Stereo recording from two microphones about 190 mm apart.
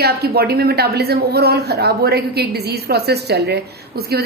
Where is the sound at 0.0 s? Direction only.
55° right (ahead or behind).